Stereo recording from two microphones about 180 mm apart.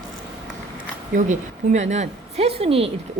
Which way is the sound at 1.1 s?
40° right (ahead or behind).